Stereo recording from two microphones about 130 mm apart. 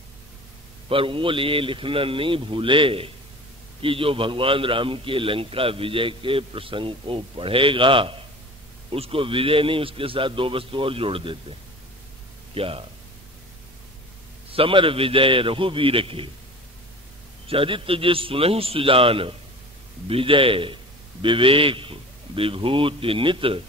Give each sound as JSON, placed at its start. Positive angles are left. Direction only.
{"t": 0.8, "sound": "a man's voice", "side_deg": -45}
{"t": 12.5, "sound": "a man's voice", "side_deg": -45}
{"t": 14.5, "sound": "a man's voice", "side_deg": -45}
{"t": 17.5, "sound": "a man's voice", "side_deg": -40}